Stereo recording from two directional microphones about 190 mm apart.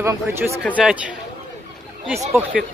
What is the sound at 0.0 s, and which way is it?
Speech, 15° right (ahead or behind).